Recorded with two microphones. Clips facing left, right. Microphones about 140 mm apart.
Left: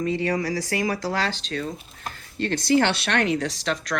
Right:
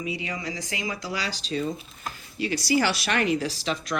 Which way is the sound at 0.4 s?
20° right (ahead or behind).